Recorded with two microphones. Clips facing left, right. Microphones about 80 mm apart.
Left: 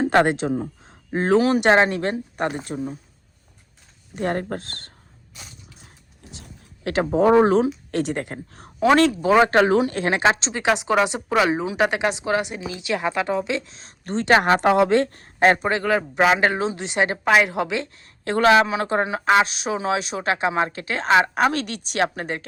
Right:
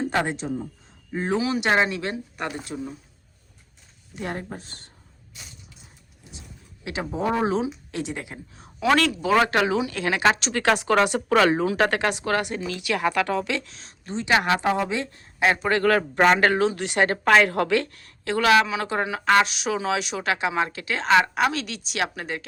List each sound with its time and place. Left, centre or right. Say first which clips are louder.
0.0 s speech: left 7 dB; left
1.1 s speech: left 7 dB; left
4.1 s speech: left 7 dB; left
6.8 s speech: left 9 dB; left
9.0 s a woman's voice: left 4 dB; left
10.5 s speech: even; centre
14.0 s a woman's voice: left 5 dB; left
14.3 s a woman's voice: left 4 dB; left
14.6 s speech: left 7 dB; left
15.6 s speech: right 1 dB; centre
16.4 s speech: right 1 dB; left
18.3 s a woman's voice: left 3 dB; left
19.2 s speech: left 1 dB; centre
19.5 s a woman's voice: left 2 dB; left